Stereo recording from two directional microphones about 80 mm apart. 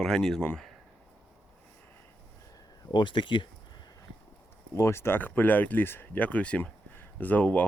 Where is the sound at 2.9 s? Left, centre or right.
Left.